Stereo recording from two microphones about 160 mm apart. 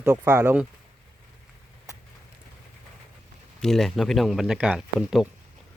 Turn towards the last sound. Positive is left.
turn(degrees=0)  # may be behind; listen again after turning